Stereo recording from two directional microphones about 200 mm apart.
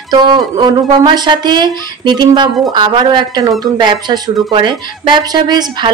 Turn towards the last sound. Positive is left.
turn(degrees=-20)  # may be behind; listen again after turning